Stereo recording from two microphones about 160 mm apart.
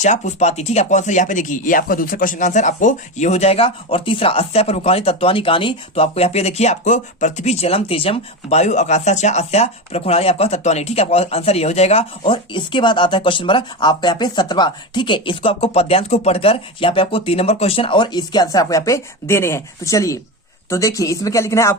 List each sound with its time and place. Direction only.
0.0 s a woman's voice: 45° left (ahead or behind); by 21.8 s 20° left (ahead or behind)